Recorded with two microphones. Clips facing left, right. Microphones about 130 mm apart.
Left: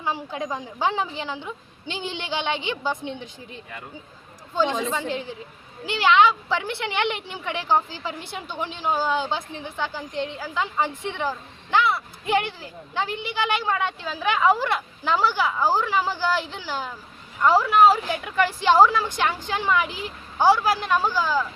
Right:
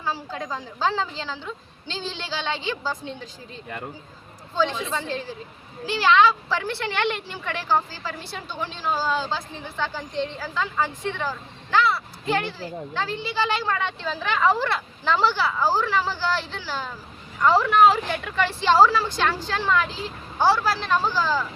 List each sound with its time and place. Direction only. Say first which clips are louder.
0.0 s speech: left 2 dB; 15° left (ahead or behind)
4.9 s speech: left 1 dB; 15° left (ahead or behind)